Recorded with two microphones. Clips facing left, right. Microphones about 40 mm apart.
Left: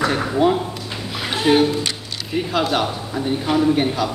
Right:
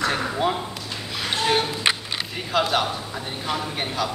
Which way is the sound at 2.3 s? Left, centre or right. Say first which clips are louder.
Left 3 dB; centre.